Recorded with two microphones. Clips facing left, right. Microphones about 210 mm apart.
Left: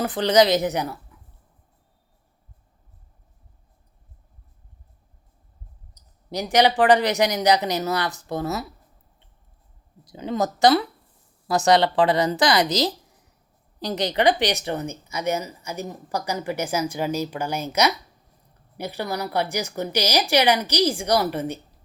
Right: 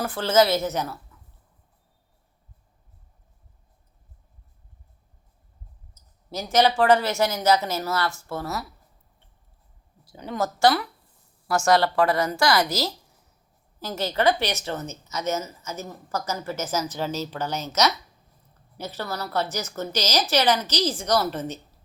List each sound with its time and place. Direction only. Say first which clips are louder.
0.0 s speech: left 2 dB; 20° left (ahead or behind)
5.9 s speech: left 4 dB; 15° left (ahead or behind)
10.0 s a woman's voice: left 3 dB; 20° left (ahead or behind)